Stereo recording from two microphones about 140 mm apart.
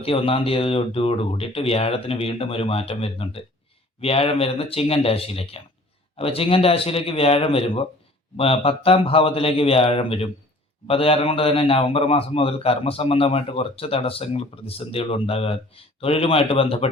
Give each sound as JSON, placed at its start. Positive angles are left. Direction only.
{"t": 0.0, "sound": "a man's voice", "side_deg": 40}